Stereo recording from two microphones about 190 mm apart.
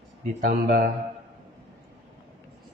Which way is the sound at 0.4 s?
50° right (ahead or behind).